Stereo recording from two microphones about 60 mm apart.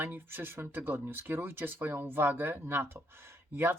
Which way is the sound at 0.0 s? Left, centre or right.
Right.